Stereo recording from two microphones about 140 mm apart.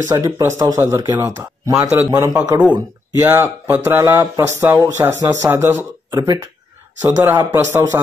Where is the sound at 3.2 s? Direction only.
15° right (ahead or behind).